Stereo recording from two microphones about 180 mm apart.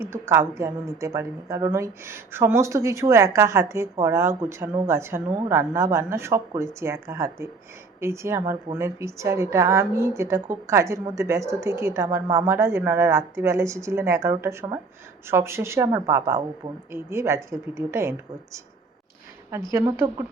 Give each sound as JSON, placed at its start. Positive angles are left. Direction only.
{"t": 0.0, "sound": "a woman's voice", "side_deg": -15}
{"t": 19.7, "sound": "a woman's voice", "side_deg": -15}